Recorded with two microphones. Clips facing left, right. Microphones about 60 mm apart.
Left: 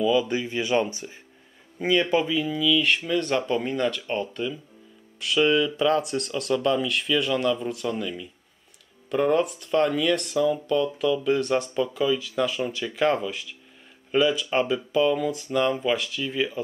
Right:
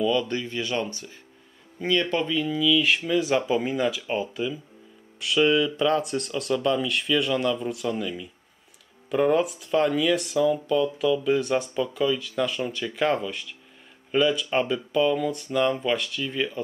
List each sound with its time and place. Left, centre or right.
0.0 s speech: centre